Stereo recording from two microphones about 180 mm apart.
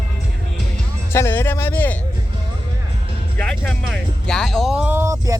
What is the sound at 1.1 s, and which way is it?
Speech, 15° left (ahead or behind).